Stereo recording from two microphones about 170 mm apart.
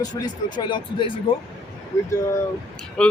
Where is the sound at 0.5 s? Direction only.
30° left (ahead or behind).